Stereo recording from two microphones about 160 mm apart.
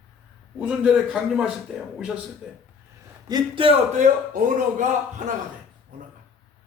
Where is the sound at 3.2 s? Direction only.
30° right (ahead or behind).